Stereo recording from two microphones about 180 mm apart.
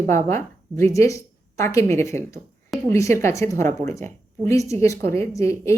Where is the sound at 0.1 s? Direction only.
15° left (ahead or behind).